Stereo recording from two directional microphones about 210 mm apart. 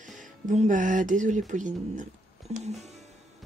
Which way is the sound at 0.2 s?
35° right (ahead or behind).